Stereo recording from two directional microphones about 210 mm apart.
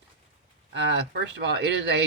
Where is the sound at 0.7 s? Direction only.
55° right (ahead or behind).